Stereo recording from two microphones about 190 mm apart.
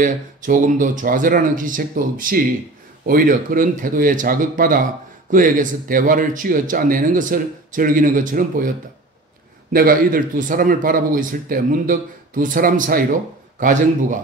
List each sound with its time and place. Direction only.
0.0 s speech: 45° right (ahead or behind)